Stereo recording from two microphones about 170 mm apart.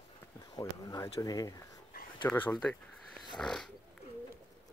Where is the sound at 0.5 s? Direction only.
20° left (ahead or behind).